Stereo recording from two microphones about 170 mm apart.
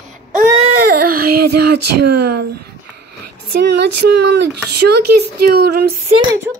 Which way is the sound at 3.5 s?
85° right.